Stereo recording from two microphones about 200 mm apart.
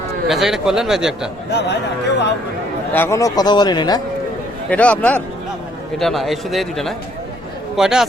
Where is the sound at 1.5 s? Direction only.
60° left (ahead or behind).